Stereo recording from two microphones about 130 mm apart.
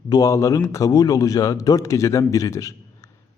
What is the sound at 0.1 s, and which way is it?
A man's voice, 30° left (ahead or behind).